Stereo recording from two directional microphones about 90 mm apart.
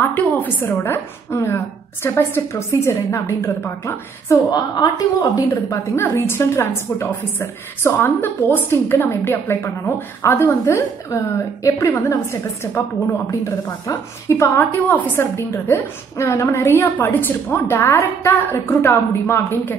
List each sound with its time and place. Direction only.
0.1 s a woman's voice: 20° left (ahead or behind)
4.5 s a woman's voice: 50° left (ahead or behind)
5.9 s a woman's voice: 30° left (ahead or behind)
10.6 s a woman's voice: 35° left (ahead or behind)